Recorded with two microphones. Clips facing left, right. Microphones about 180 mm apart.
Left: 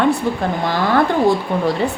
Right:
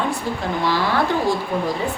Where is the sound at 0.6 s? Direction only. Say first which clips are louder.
Left 2 dB; 50° left (ahead or behind).